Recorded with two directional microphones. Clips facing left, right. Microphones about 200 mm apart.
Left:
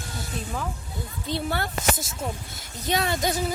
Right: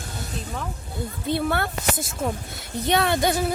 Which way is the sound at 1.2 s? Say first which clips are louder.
Right 4 dB; 60° right (ahead or behind).